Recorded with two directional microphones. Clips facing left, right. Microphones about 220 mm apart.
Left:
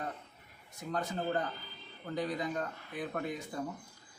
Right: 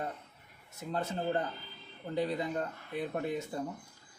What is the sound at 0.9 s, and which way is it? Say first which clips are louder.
Speech: right 1 dB; 25° right (ahead or behind).